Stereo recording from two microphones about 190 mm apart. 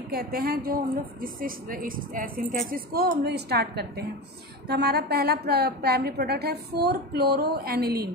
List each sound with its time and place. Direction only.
0.1 s a woman's voice: 55° right (ahead or behind)